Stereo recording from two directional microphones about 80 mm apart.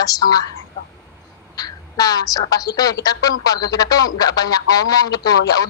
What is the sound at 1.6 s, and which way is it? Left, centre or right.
A woman's voice, left.